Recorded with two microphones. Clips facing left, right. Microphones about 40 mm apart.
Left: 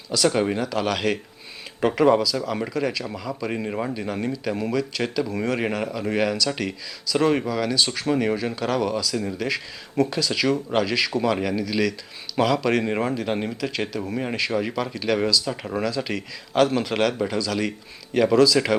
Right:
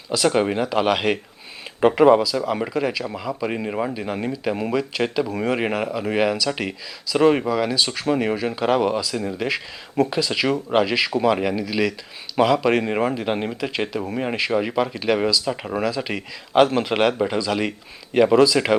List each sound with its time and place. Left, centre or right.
0.1 s speech: centre